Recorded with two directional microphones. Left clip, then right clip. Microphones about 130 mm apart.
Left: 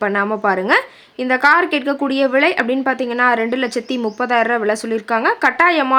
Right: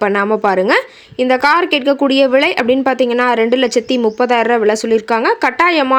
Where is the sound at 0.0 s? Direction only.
30° right (ahead or behind).